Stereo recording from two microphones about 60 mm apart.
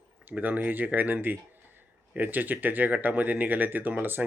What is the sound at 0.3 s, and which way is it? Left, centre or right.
Speech, right.